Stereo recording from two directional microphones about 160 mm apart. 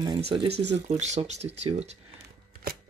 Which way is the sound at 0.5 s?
90° right.